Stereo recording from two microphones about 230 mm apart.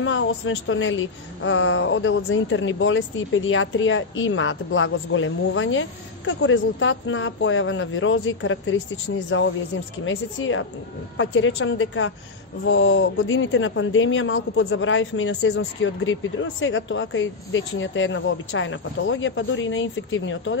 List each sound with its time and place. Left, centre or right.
0.0 s a woman's voice: left